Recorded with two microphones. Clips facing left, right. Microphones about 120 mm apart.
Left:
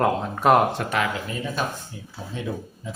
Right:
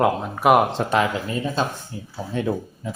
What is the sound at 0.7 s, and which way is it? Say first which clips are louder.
Speech: right 4 dB; 25° right (ahead or behind).